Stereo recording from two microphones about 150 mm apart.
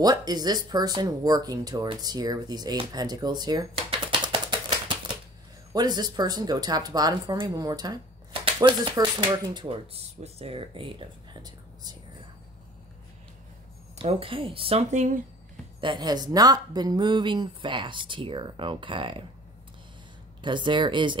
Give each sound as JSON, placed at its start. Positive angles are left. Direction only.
{"t": 0.0, "sound": "speech", "side_deg": -25}
{"t": 4.1, "sound": "typewriter", "side_deg": -35}
{"t": 5.7, "sound": "speech", "side_deg": -25}
{"t": 9.9, "sound": "speech", "side_deg": -40}
{"t": 13.9, "sound": "speech", "side_deg": -35}
{"t": 15.8, "sound": "speech", "side_deg": -30}
{"t": 20.4, "sound": "speech", "side_deg": -30}